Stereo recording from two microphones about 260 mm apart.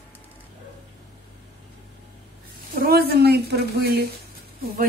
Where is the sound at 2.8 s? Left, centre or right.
Right.